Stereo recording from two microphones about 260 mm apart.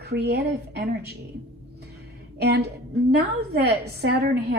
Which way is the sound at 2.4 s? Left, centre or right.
Right.